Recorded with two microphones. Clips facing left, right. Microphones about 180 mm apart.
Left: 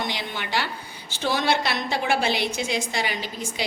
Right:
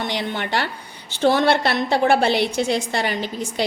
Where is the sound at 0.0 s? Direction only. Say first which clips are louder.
Right 5 dB; 60° right (ahead or behind).